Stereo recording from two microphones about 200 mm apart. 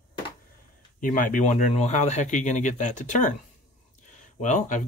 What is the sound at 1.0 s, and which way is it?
Speech, 40° left (ahead or behind).